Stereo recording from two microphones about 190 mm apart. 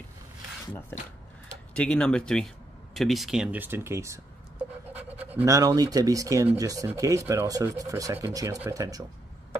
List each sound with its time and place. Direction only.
1.7 s speech: 5° left (ahead or behind); by 9.0 s 20° right (ahead or behind)